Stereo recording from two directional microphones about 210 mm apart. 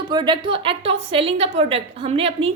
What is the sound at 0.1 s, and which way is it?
A woman's voice, 20° right (ahead or behind).